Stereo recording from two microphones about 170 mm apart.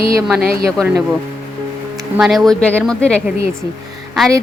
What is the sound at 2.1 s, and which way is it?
Speech, centre (ahead or behind).